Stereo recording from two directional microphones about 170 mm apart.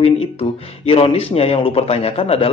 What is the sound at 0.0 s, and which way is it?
Speech, 35° left (ahead or behind).